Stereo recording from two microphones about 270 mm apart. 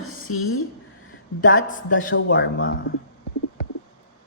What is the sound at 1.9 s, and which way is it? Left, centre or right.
A man's voice, left.